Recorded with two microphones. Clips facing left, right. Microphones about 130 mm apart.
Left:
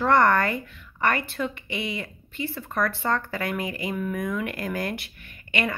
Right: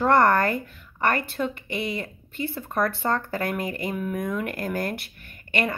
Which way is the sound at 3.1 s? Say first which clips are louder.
Left 1 dB; 30° right (ahead or behind).